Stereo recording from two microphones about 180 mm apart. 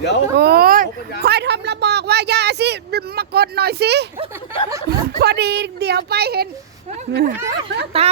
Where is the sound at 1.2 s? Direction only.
65° right (ahead or behind).